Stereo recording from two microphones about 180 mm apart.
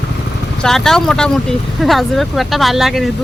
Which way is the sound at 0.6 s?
Centre (ahead or behind).